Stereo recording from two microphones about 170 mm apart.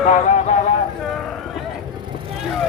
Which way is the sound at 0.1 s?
45° left (ahead or behind).